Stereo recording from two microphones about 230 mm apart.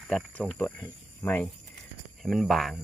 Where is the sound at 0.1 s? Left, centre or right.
Centre.